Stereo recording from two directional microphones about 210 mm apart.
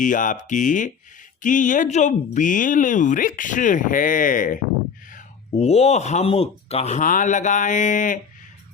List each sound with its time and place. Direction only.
0.0 s speech: 40° left (ahead or behind)